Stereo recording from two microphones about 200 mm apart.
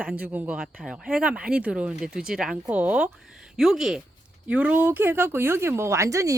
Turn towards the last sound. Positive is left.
turn(degrees=-15)  # may be behind; listen again after turning